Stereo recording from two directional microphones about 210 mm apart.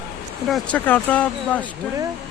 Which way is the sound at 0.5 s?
5° left (ahead or behind).